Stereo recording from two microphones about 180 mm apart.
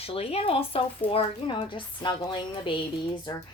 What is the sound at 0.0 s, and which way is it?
Speech, 35° left (ahead or behind).